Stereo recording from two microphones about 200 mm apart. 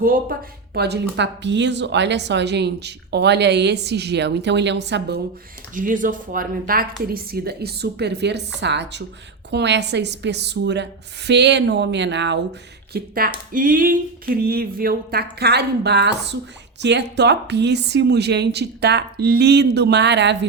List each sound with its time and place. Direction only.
0.0 s speech: 45° right (ahead or behind)
5.7 s speech: 40° right (ahead or behind); by 12.4 s 60° right (ahead or behind)
12.9 s speech: 50° right (ahead or behind)